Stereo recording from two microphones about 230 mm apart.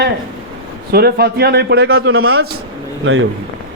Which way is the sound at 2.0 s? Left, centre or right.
Right.